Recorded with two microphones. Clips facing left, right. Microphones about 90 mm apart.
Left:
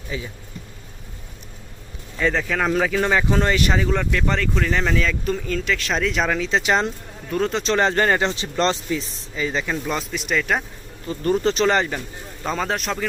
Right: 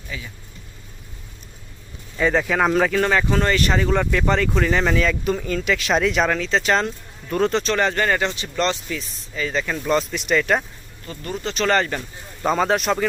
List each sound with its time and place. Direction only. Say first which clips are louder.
0.1 s speech: left 5 dB; 25° left (ahead or behind)
2.1 s speech: right 3 dB; 10° right (ahead or behind)
6.4 s speech: even; 15° left (ahead or behind)
7.3 s speech: right 2 dB; centre (ahead or behind)
7.6 s speech: left 2 dB; 25° left (ahead or behind)
9.3 s speech: even; 15° left (ahead or behind)
9.6 s speech: right 4 dB; 5° left (ahead or behind)
11.2 s speech: left 9 dB; 40° left (ahead or behind)
11.5 s speech: left 1 dB; 15° left (ahead or behind)
12.4 s speech: right 5 dB; 5° right (ahead or behind)